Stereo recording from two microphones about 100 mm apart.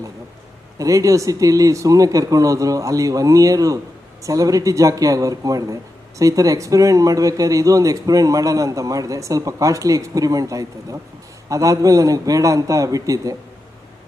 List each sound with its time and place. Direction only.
0.8 s a man's voice: 35° right (ahead or behind)